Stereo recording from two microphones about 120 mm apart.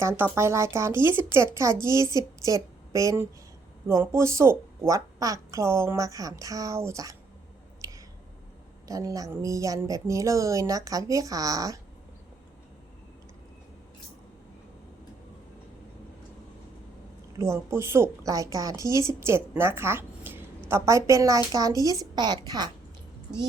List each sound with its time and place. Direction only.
0.3 s a woman's voice: 25° right (ahead or behind)
7.8 s squish: 25° right (ahead or behind)
8.9 s a woman's voice: 30° right (ahead or behind)
17.3 s a woman's voice: 25° right (ahead or behind)